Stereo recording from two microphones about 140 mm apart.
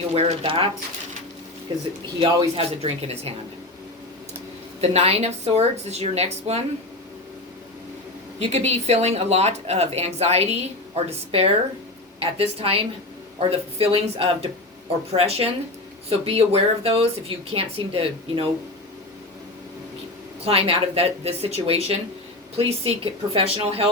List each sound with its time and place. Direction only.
0.1 s speech: 45° right (ahead or behind)
1.7 s speech: 35° right (ahead or behind)
2.6 s speech: 45° right (ahead or behind)
4.8 s speech: 45° right (ahead or behind)
8.4 s speech: 50° right (ahead or behind)
20.4 s speech: 45° right (ahead or behind)